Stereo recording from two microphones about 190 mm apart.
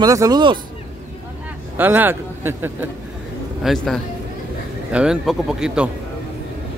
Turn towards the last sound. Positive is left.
turn(degrees=-5)  # may be behind; listen again after turning